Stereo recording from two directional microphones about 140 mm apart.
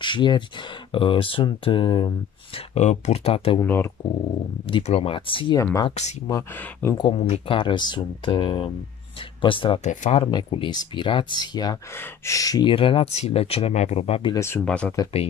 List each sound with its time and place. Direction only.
0.0 s speech: 35° left (ahead or behind)
2.8 s speech: 50° left (ahead or behind)
3.6 s speech: 15° left (ahead or behind)
4.6 s speech: 40° left (ahead or behind)
5.6 s speech: 20° left (ahead or behind)
5.9 s speech: 55° left (ahead or behind)
6.5 s speech: 15° left (ahead or behind)
7.0 s speech: 45° left (ahead or behind)
7.5 s speech: 35° left (ahead or behind)
11.9 s speech: 20° left (ahead or behind); by 14.3 s 45° left (ahead or behind)
14.3 s speech: 20° left (ahead or behind)
14.6 s speech: 10° left (ahead or behind)